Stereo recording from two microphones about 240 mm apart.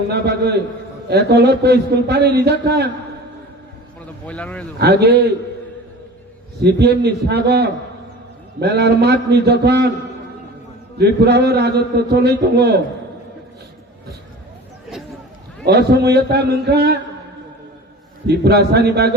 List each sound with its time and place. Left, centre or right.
0.1 s a man's voice: right
4.3 s a man's voice: centre
4.8 s a man's voice: right
6.6 s a man's voice: right
10.9 s a man's voice: right
15.6 s a man's voice: right
18.3 s a man's voice: right